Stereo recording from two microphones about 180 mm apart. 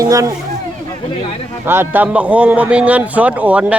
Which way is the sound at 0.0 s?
20° right (ahead or behind).